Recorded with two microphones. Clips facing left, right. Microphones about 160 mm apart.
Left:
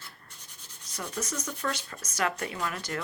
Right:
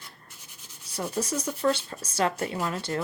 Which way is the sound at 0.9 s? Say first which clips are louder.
Right 6 dB; 30° right (ahead or behind).